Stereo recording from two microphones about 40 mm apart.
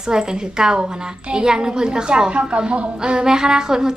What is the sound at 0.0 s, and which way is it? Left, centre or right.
A woman's voice, centre.